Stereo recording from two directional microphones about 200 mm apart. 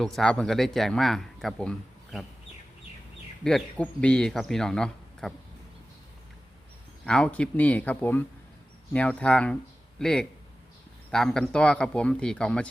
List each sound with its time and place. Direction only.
0.0 s a man's voice: centre (ahead or behind)
3.4 s a man's voice: 5° left (ahead or behind)
7.0 s a man's voice: 5° left (ahead or behind)